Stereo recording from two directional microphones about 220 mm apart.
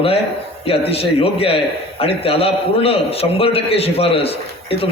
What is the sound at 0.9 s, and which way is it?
A man's voice, 25° left (ahead or behind).